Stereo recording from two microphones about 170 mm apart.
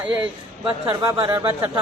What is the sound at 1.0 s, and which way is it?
Speech, 25° right (ahead or behind).